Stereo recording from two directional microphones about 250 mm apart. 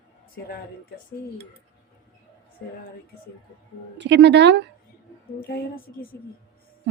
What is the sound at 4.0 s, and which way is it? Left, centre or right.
Speech, right.